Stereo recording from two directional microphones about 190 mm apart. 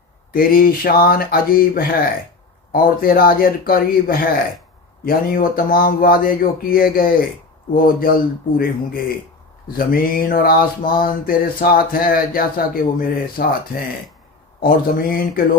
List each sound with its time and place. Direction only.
0.3 s mantra: 50° left (ahead or behind)